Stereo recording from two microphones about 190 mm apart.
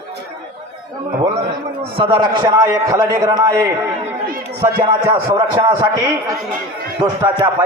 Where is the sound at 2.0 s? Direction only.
25° right (ahead or behind).